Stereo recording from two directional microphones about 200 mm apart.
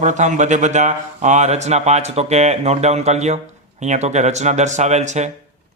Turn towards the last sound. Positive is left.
turn(degrees=-35)  # may be behind; listen again after turning